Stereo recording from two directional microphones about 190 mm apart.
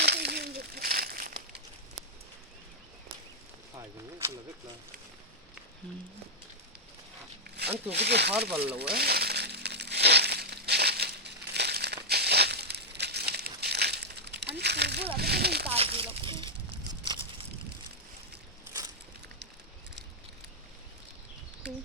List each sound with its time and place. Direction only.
0.0 s a sound: 60° right (ahead or behind)
7.4 s zipper: 60° right (ahead or behind)
7.9 s speech: 60° right (ahead or behind)
8.8 s crumpling: 55° right (ahead or behind)
12.0 s crushing: 60° right (ahead or behind)
15.2 s speech: 55° right (ahead or behind)
15.6 s speech: 30° right (ahead or behind)
16.7 s a sound: 25° right (ahead or behind)